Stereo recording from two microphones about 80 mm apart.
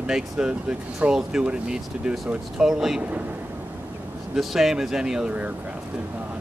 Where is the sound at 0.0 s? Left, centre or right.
Centre.